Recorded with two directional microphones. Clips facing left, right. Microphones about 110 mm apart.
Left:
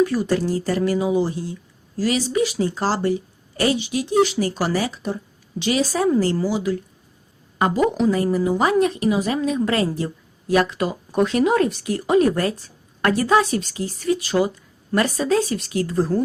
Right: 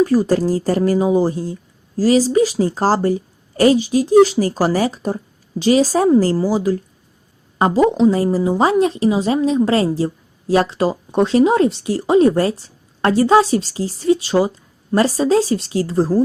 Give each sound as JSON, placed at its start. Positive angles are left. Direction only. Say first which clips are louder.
{"t": 0.0, "sound": "a woman's voice", "louder": "right 5 dB", "side_deg": -35}